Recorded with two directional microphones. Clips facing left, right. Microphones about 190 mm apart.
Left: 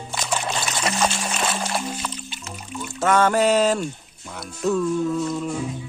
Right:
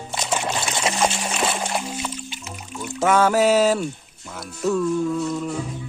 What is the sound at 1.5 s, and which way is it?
Music, 15° right (ahead or behind).